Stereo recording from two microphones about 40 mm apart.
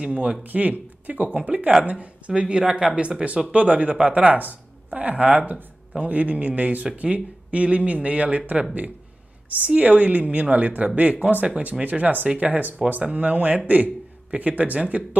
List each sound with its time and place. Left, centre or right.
0.0 s speech: right
0.4 s speech: right
3.5 s speech: right